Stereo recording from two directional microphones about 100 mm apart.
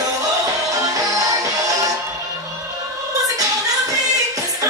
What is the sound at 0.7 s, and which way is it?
Music, 35° right (ahead or behind).